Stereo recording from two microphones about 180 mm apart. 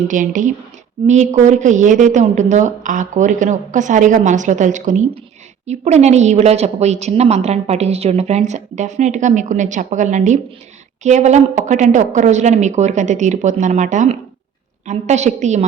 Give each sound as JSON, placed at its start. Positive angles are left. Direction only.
{"t": 0.0, "sound": "a woman's voice", "side_deg": -45}